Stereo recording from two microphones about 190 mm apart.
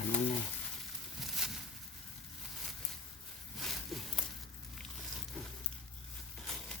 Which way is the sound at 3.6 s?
Centre (ahead or behind).